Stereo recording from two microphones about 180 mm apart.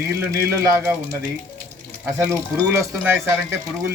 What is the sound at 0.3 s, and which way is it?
Speech, 15° right (ahead or behind).